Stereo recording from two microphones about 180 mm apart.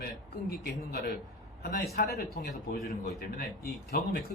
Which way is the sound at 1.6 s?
55° left (ahead or behind).